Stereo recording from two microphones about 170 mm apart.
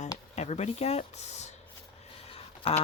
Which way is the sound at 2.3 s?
35° left (ahead or behind).